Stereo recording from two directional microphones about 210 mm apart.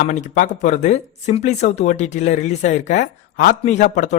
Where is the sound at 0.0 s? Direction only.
35° left (ahead or behind).